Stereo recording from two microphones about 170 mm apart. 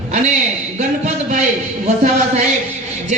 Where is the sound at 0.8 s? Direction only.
45° right (ahead or behind).